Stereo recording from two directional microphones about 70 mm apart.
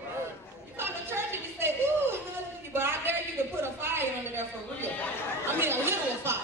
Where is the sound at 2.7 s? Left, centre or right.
Right.